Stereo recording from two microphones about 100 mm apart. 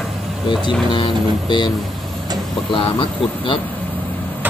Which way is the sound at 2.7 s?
60° left (ahead or behind).